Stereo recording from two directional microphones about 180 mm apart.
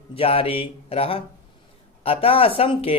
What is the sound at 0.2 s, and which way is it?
Speech, 30° left (ahead or behind).